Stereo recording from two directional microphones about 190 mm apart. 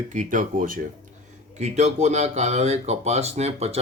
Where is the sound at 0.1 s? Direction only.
40° right (ahead or behind).